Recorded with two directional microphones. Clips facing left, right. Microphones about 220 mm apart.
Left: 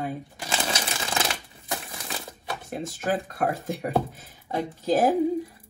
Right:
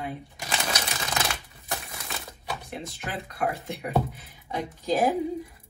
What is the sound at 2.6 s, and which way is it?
Speech, 45° left (ahead or behind).